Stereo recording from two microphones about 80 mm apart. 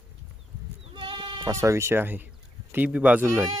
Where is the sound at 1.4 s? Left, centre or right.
Right; by 3.2 s centre.